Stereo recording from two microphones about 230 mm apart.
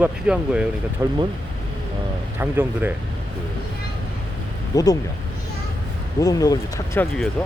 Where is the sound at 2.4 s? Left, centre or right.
Centre.